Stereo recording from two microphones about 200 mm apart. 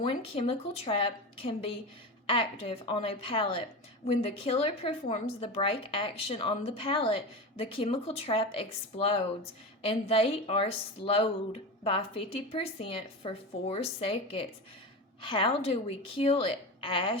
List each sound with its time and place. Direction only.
0.0 s a woman's voice: 30° left (ahead or behind)